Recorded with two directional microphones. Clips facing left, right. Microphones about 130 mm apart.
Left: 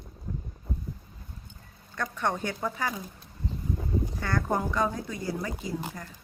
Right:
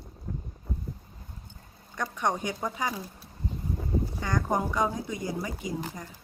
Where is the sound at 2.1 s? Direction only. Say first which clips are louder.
Right 1 dB; 15° right (ahead or behind).